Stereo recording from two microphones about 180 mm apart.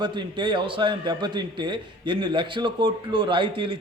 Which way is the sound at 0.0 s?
25° right (ahead or behind).